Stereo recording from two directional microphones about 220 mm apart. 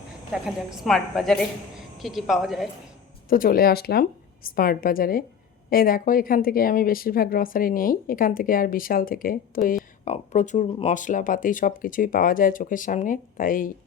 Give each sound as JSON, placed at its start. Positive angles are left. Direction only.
{"t": 0.4, "sound": "a woman's voice", "side_deg": 0}
{"t": 3.2, "sound": "speech", "side_deg": 40}